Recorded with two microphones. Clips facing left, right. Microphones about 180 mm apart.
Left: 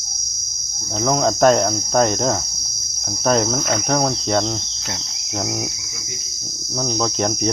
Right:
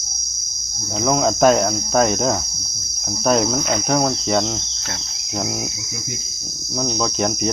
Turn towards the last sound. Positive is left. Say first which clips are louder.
# even
turn(degrees=0)  # may be behind; listen again after turning